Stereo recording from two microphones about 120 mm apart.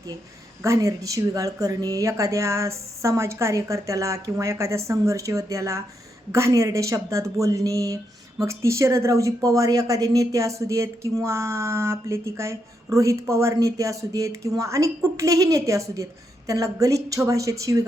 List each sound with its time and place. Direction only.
0.6 s speech: 25° right (ahead or behind)